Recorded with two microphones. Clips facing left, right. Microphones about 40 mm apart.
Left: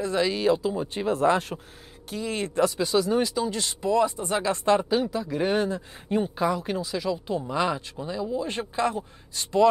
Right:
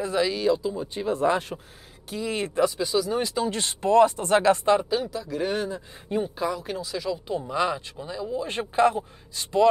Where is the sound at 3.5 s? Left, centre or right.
Right.